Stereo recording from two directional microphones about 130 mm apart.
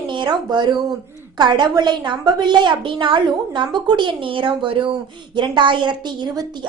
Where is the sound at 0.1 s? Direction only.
35° right (ahead or behind).